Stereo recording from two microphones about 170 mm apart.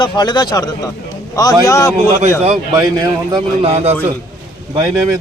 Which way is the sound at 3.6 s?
35° right (ahead or behind).